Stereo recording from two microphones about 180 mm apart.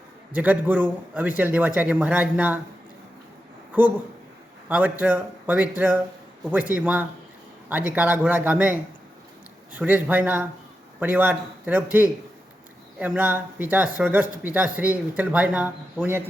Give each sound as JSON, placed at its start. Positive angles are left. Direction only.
{"t": 0.3, "sound": "speech", "side_deg": -10}
{"t": 3.7, "sound": "speech", "side_deg": -10}